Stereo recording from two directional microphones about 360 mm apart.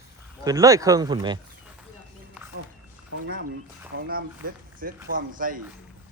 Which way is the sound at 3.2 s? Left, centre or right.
Right.